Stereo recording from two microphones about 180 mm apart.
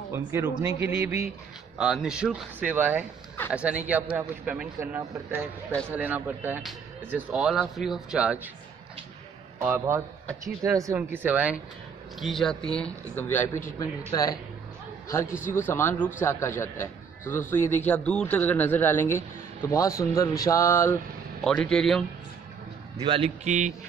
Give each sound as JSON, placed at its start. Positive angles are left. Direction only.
{"t": 0.1, "sound": "speech", "side_deg": -10}
{"t": 9.6, "sound": "speech", "side_deg": -10}
{"t": 15.4, "sound": "a man's voice", "side_deg": 10}
{"t": 21.5, "sound": "speech", "side_deg": 5}
{"t": 22.9, "sound": "a man's voice", "side_deg": -30}